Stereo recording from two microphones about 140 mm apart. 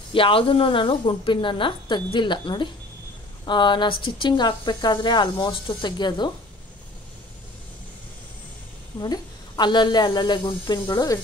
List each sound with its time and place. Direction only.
0.1 s speech: 40° left (ahead or behind)
9.0 s speech: 30° left (ahead or behind)